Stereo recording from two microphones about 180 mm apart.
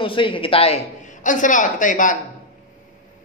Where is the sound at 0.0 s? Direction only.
30° left (ahead or behind); by 2.1 s 45° left (ahead or behind).